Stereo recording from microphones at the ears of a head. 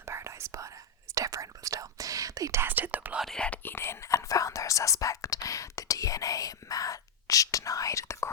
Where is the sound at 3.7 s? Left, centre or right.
Left.